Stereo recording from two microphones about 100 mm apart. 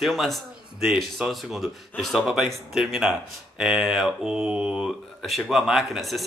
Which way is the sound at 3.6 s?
10° right (ahead or behind).